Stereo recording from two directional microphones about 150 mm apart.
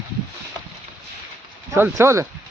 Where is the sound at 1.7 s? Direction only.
20° right (ahead or behind).